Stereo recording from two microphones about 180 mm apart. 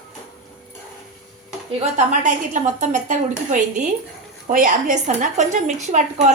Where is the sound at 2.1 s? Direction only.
45° right (ahead or behind).